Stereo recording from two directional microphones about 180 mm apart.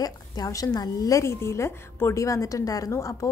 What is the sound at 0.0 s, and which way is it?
A woman's voice, 20° left (ahead or behind).